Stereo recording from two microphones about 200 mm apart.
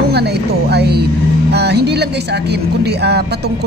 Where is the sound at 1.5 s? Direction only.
55° right (ahead or behind).